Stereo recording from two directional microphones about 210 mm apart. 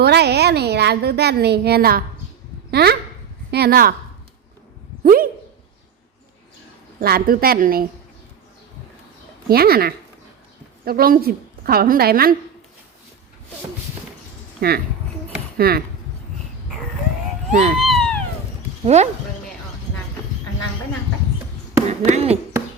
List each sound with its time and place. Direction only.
0.0 s a woman's voice: 50° right (ahead or behind)
5.0 s dog: 45° right (ahead or behind)
7.0 s a woman's voice: 45° right (ahead or behind)
9.5 s a woman's voice: 45° right (ahead or behind)
14.6 s a woman's voice: 45° right (ahead or behind)
17.5 s speech: 35° right (ahead or behind)
17.7 s cat: centre (ahead or behind)
21.8 s speech: 30° right (ahead or behind)